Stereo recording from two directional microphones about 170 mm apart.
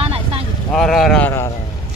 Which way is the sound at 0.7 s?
5° left (ahead or behind).